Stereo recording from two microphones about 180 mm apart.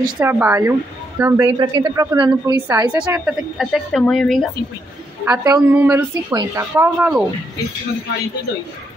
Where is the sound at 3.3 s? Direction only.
Centre (ahead or behind).